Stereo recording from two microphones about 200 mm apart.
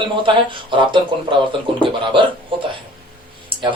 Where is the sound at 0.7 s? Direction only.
25° right (ahead or behind).